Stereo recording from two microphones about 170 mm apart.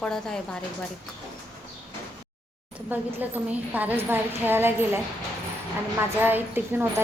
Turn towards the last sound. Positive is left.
turn(degrees=-10)  # may be behind; listen again after turning